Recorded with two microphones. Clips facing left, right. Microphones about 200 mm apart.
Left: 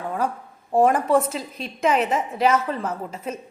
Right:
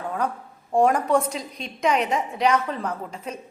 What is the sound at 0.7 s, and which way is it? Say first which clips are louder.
A woman's voice: left 1 dB; centre (ahead or behind).